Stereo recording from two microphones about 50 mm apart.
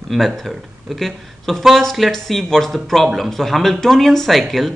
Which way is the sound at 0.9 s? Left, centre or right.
Centre.